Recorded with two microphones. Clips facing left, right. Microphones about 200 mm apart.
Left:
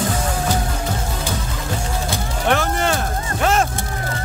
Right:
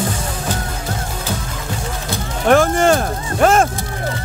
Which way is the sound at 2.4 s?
45° right (ahead or behind).